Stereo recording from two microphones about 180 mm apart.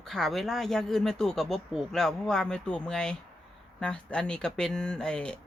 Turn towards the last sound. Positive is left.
turn(degrees=5)  # may be behind; listen again after turning